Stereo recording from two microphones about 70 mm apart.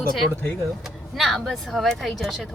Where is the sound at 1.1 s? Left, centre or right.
Centre.